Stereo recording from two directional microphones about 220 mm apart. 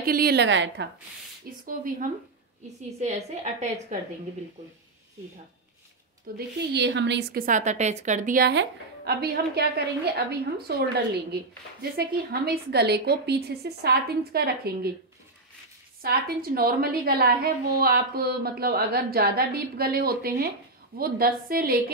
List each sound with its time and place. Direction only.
0.0 s a woman's voice: 45° right (ahead or behind)
1.5 s a woman's voice: 45° right (ahead or behind)
3.0 s a woman's voice: 30° right (ahead or behind)
6.3 s a woman's voice: 50° right (ahead or behind)
12.0 s a woman's voice: 45° right (ahead or behind)
16.0 s a woman's voice: 40° right (ahead or behind)